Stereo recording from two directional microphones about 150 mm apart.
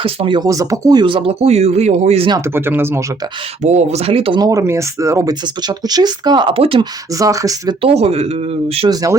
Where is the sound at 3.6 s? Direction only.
50° right (ahead or behind).